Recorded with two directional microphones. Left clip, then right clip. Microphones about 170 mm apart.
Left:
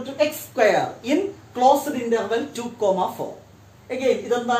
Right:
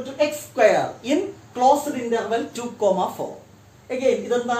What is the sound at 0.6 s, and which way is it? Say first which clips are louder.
Speech: right 1 dB; 5° right (ahead or behind).